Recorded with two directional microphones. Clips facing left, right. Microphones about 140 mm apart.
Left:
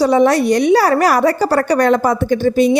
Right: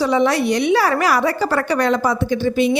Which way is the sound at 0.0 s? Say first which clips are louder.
Left 5 dB; 45° left (ahead or behind).